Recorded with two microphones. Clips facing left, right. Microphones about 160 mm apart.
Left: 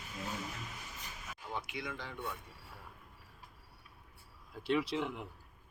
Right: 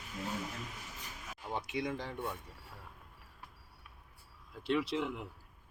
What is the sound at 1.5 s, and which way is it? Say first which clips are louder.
Speech: right 5 dB; 35° right (ahead or behind).